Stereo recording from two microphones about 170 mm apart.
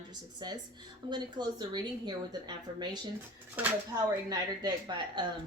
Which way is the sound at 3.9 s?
25° right (ahead or behind).